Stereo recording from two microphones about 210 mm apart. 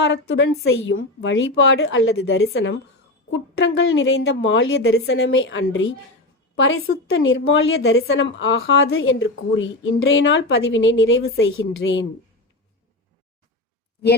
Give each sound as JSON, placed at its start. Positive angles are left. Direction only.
{"t": 0.0, "sound": "a woman's voice", "side_deg": 55}
{"t": 8.1, "sound": "a woman's voice", "side_deg": 60}